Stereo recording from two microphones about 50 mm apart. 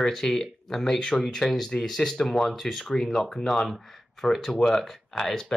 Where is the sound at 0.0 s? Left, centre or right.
Centre.